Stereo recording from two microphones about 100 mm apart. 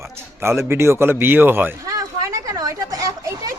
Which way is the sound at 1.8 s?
35° right (ahead or behind).